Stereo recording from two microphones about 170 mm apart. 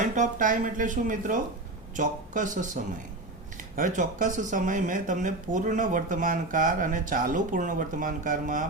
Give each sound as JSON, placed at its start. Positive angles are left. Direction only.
{"t": 0.0, "sound": "speech", "side_deg": -45}
{"t": 3.8, "sound": "speech", "side_deg": -50}